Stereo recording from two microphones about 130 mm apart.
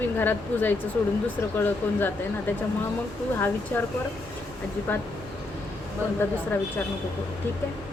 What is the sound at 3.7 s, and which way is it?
Speech, 15° left (ahead or behind).